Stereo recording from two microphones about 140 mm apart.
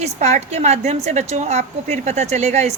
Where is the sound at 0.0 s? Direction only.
50° right (ahead or behind).